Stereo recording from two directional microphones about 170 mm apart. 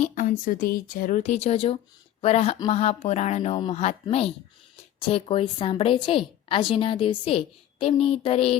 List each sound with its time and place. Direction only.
0.0 s a woman's voice: 45° left (ahead or behind)